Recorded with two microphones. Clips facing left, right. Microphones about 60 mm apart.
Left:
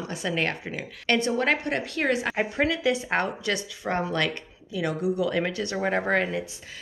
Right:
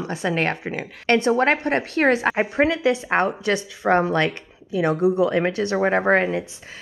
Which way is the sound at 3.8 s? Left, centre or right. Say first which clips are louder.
Right 9 dB; right.